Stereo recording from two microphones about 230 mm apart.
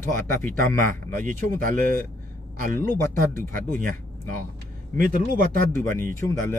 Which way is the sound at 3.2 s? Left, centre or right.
Right.